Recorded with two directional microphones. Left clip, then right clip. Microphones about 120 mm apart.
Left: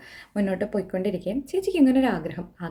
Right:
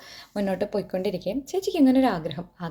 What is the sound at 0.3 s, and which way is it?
A woman's voice, 20° left (ahead or behind).